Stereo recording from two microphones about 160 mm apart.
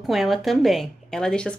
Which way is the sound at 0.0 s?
Centre (ahead or behind).